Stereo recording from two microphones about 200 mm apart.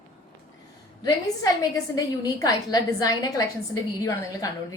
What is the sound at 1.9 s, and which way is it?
A woman's voice, 20° left (ahead or behind).